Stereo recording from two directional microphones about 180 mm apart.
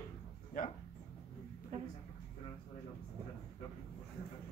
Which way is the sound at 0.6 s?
50° left (ahead or behind).